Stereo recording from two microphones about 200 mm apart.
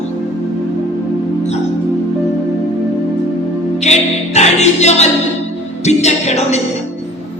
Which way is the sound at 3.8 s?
35° left (ahead or behind).